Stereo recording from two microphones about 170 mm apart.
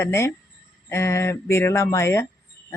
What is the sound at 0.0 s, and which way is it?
A man's voice, 15° left (ahead or behind).